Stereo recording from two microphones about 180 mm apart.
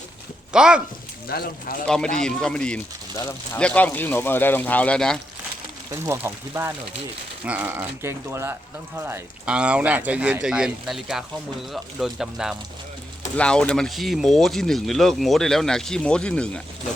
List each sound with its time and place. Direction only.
0.5 s speech: 5° right (ahead or behind)
1.3 s speech: 55° left (ahead or behind)
1.9 s speech: 5° left (ahead or behind)
5.9 s speech: 15° right (ahead or behind); by 16.5 s 5° left (ahead or behind)